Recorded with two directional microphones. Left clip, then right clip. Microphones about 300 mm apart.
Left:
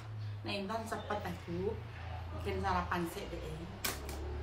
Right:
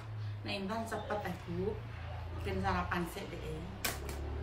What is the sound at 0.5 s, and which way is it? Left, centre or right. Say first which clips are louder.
Speech: even; centre.